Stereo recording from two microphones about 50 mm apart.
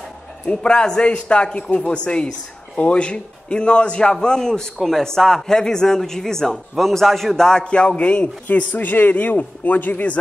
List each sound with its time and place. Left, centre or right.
0.5 s a man's voice: centre; by 10.1 s left